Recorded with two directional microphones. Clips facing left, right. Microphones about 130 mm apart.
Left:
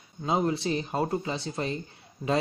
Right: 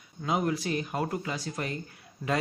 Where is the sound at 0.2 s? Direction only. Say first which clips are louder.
Left 2 dB; 25° left (ahead or behind).